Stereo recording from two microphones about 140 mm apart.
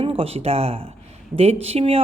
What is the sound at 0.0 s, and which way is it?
Speech, 45° right (ahead or behind).